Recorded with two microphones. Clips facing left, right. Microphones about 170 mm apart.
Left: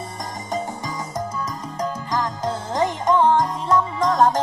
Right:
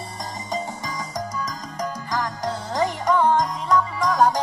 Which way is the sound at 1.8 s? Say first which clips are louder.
Left 2 dB; 20° left (ahead or behind).